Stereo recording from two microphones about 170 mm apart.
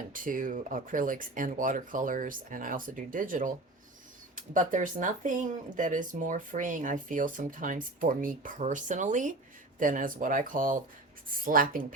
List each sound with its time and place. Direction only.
0.1 s speech: 50° right (ahead or behind)